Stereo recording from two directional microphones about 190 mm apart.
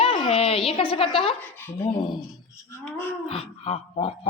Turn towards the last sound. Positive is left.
turn(degrees=35)  # may be behind; listen again after turning